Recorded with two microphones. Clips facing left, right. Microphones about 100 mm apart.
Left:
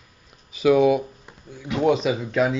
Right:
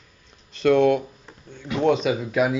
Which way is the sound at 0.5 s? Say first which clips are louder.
Left 1 dB; 5° left (ahead or behind).